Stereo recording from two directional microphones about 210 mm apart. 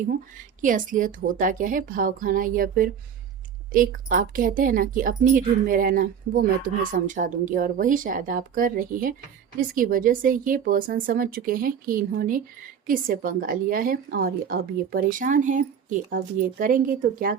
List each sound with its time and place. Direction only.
0.6 s a woman's voice: 40° right (ahead or behind)